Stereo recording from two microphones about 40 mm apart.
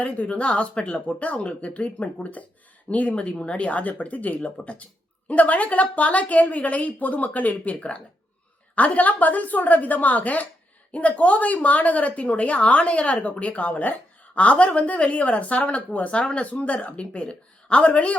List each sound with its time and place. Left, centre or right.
0.0 s a woman's voice: left